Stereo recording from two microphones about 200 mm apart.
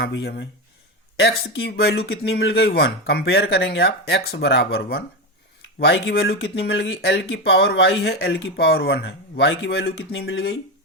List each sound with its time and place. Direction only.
0.0 s speech: 55° left (ahead or behind)